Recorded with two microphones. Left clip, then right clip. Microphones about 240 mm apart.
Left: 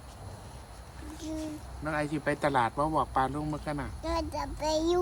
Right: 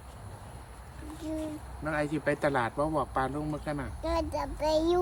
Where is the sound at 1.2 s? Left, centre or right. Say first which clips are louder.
Right 2 dB; centre.